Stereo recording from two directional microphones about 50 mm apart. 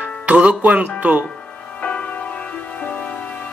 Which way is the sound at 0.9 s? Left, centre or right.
Right.